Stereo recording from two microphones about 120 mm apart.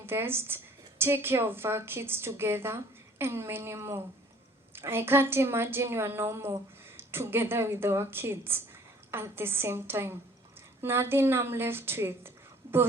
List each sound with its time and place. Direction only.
0.0 s a woman's voice: 20° right (ahead or behind)